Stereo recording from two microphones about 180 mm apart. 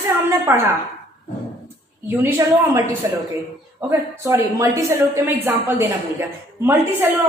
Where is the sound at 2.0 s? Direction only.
15° right (ahead or behind).